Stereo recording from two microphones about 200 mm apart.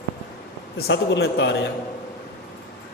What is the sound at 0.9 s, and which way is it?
Speech, 60° left (ahead or behind).